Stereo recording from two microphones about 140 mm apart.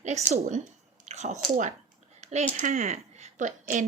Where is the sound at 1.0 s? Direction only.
55° right (ahead or behind).